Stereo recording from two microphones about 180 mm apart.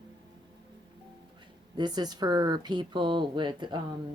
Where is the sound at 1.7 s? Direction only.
25° right (ahead or behind).